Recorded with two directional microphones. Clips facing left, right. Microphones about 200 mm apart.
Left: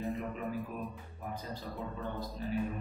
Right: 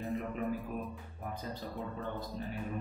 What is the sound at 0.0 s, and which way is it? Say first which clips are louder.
Music: right 1 dB; centre (ahead or behind).